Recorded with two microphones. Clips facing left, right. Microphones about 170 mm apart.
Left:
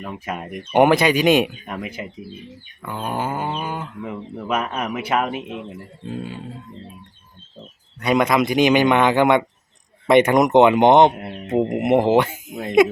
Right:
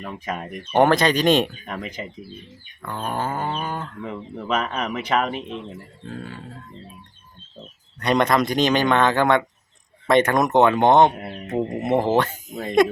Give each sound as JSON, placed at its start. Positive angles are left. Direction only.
{"t": 0.0, "sound": "speech", "side_deg": 5}
{"t": 7.9, "sound": "speech", "side_deg": 5}